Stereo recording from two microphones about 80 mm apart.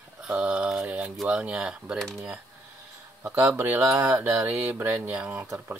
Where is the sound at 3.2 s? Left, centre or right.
Right.